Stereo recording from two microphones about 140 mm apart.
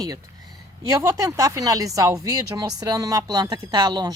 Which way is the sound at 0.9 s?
20° right (ahead or behind).